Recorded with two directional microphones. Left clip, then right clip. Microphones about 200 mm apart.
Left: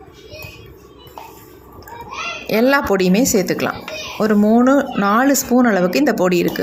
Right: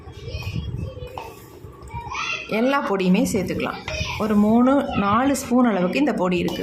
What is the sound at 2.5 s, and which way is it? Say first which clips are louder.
A woman's voice: left 7 dB; 20° left (ahead or behind).